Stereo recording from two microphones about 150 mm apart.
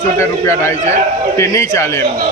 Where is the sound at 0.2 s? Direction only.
20° left (ahead or behind).